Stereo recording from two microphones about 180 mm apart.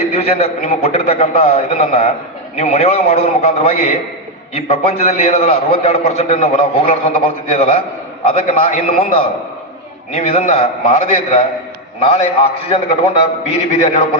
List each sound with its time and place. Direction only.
0.1 s a man's voice: 35° left (ahead or behind)
10.1 s a man's voice: 35° left (ahead or behind)